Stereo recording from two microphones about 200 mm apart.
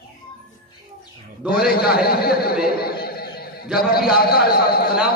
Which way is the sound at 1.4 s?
50° left (ahead or behind).